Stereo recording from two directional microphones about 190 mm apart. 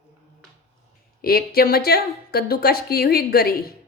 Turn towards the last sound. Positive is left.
turn(degrees=55)  # may be behind; listen again after turning